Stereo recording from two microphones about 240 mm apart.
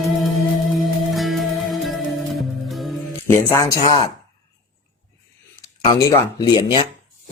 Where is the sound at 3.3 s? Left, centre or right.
Centre.